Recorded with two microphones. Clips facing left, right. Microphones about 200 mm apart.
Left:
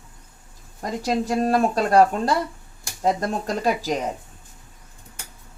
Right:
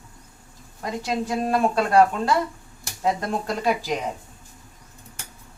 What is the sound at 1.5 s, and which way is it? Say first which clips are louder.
Speech: even; 40° left (ahead or behind).